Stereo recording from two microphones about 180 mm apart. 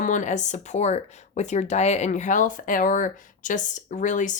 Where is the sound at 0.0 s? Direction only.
45° left (ahead or behind).